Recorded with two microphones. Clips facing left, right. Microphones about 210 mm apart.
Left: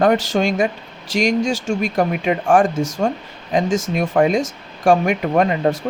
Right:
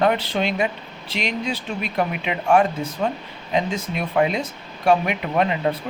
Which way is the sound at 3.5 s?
50° left (ahead or behind).